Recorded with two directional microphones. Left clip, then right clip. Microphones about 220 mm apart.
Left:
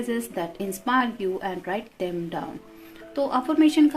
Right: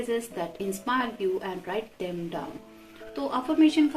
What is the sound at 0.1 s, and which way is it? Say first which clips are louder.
Speech: left 1 dB; 50° left (ahead or behind).